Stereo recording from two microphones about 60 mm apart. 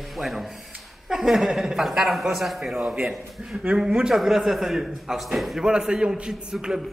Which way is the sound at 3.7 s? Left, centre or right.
Centre.